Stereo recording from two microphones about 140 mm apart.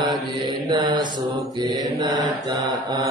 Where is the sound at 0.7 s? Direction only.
30° right (ahead or behind).